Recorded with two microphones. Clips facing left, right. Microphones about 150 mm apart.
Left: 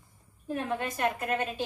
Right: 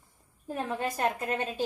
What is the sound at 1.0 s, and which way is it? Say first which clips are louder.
Speech: left 1 dB; 35° right (ahead or behind).